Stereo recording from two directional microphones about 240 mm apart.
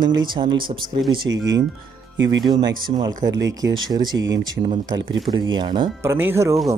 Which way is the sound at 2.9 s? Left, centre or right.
Right.